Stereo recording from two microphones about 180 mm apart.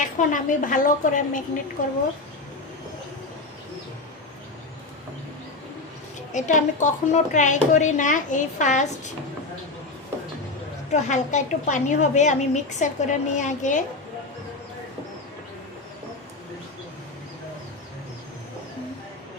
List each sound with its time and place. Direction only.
0.0 s a woman's voice: 45° left (ahead or behind)
6.3 s a woman's voice: 45° left (ahead or behind)
10.9 s a woman's voice: 40° left (ahead or behind)